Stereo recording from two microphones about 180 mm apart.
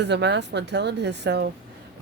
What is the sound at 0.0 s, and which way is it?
Speech, 70° right (ahead or behind).